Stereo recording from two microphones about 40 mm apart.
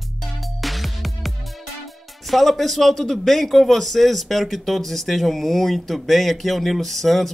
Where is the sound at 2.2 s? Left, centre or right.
Centre.